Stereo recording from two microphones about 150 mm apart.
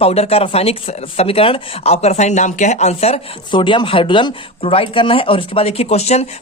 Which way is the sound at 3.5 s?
30° left (ahead or behind).